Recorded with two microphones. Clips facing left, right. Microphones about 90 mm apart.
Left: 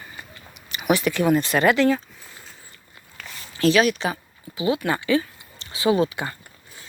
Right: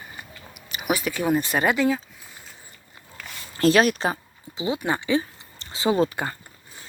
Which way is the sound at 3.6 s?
40° right (ahead or behind).